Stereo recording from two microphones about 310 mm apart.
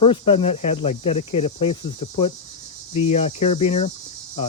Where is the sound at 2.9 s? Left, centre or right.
Centre.